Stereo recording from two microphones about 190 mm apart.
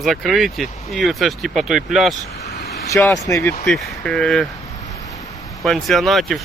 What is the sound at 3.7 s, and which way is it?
Speech, centre (ahead or behind).